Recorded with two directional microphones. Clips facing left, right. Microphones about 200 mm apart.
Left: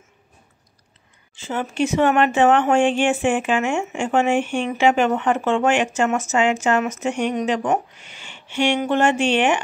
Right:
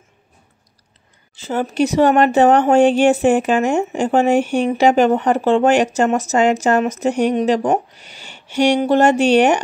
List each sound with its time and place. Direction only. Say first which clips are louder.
1.3 s speech: right 5 dB; 40° right (ahead or behind)